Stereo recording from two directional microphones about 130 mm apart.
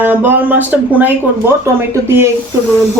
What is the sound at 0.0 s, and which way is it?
A woman's voice, 15° right (ahead or behind).